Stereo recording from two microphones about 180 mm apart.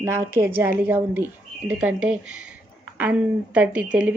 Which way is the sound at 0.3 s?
15° right (ahead or behind).